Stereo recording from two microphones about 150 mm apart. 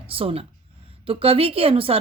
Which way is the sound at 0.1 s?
40° right (ahead or behind).